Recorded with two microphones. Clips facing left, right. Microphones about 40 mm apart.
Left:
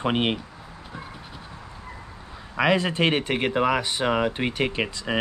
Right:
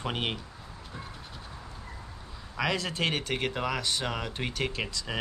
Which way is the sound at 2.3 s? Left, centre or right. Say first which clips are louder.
Left 9 dB; left.